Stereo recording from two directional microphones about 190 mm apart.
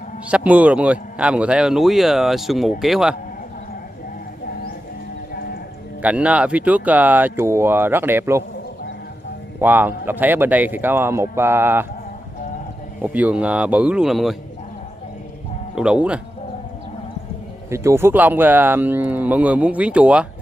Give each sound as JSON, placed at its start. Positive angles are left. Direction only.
{"t": 0.3, "sound": "speech", "side_deg": -5}
{"t": 5.3, "sound": "livestock", "side_deg": 50}
{"t": 6.0, "sound": "speech", "side_deg": -5}
{"t": 9.6, "sound": "speech", "side_deg": -10}
{"t": 13.0, "sound": "speech", "side_deg": -10}
{"t": 15.7, "sound": "speech", "side_deg": -5}
{"t": 17.6, "sound": "speech", "side_deg": -15}